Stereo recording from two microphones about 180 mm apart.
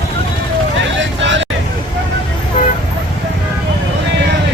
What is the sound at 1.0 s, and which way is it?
Vehicle, 90° right.